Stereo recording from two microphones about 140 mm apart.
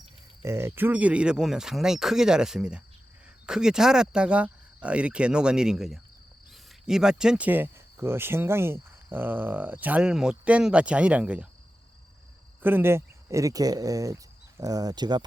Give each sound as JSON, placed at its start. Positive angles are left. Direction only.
{"t": 0.4, "sound": "speech", "side_deg": -20}
{"t": 12.6, "sound": "speech", "side_deg": -15}